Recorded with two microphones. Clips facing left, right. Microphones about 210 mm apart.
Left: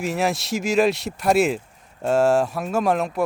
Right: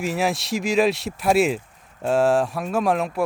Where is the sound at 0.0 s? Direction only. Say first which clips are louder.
Even; centre (ahead or behind).